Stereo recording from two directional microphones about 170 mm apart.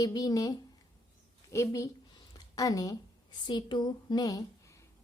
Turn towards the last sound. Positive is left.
turn(degrees=20)  # may be behind; listen again after turning